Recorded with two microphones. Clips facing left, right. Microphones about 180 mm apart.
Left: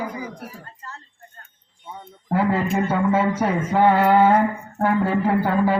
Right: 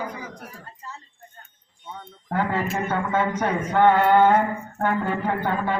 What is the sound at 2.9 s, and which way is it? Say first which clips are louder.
Speech: left 3 dB; 5° left (ahead or behind).